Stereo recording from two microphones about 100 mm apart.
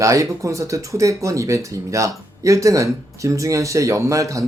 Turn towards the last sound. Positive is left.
turn(degrees=-35)  # may be behind; listen again after turning